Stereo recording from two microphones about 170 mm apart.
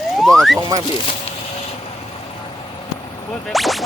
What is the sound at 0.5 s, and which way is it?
Speech, 20° right (ahead or behind).